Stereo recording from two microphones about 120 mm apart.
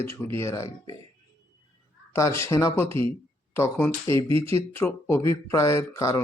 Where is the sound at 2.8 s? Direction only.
50° right (ahead or behind).